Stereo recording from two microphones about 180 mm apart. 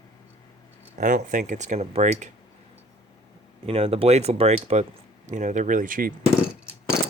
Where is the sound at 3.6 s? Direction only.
35° right (ahead or behind); by 6.3 s 50° right (ahead or behind).